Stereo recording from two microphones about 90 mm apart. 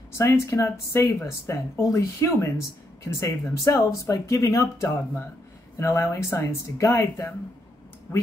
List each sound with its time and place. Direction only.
0.2 s speech: 35° left (ahead or behind)